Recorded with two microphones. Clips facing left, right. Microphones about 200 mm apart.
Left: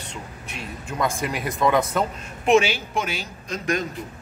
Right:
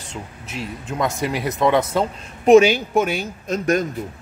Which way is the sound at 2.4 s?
40° right (ahead or behind).